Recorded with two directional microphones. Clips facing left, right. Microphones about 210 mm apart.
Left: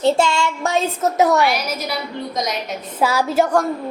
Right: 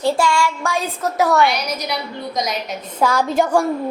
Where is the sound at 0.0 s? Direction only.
25° left (ahead or behind).